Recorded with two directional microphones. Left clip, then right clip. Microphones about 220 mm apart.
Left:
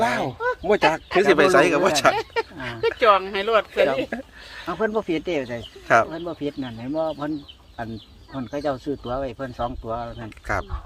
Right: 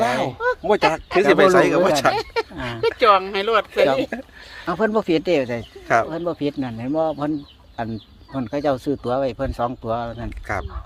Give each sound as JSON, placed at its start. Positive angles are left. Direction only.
{"t": 0.0, "sound": "speech", "side_deg": 0}
{"t": 2.1, "sound": "speech", "side_deg": -40}
{"t": 8.4, "sound": "speech", "side_deg": -45}
{"t": 10.4, "sound": "speech", "side_deg": 5}